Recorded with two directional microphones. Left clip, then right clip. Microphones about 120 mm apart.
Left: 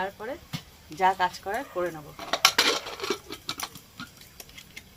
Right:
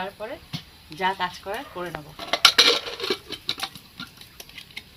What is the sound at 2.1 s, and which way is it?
Dishes, 20° right (ahead or behind).